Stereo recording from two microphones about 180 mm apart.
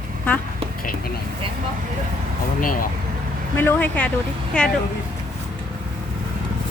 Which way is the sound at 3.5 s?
10° left (ahead or behind).